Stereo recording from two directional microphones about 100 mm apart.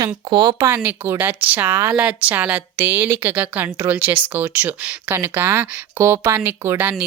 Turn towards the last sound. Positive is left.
turn(degrees=-25)  # may be behind; listen again after turning